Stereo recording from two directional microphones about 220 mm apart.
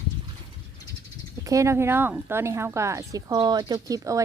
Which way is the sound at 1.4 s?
15° right (ahead or behind).